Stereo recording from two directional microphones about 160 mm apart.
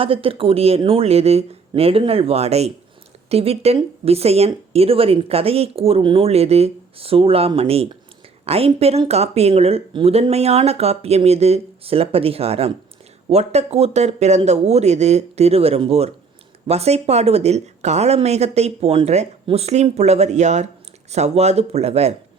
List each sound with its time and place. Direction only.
0.0 s speech: 35° right (ahead or behind)